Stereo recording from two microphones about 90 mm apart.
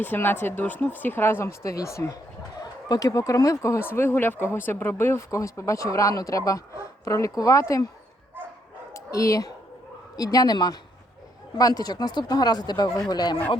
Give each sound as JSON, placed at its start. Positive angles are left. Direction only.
{"t": 0.0, "sound": "speech", "side_deg": 25}
{"t": 8.9, "sound": "bow-wow", "side_deg": 35}
{"t": 10.2, "sound": "speech", "side_deg": 45}